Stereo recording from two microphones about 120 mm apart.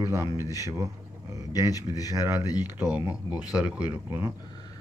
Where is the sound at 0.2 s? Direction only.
30° left (ahead or behind).